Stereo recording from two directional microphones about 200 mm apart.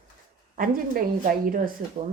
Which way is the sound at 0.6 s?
45° right (ahead or behind).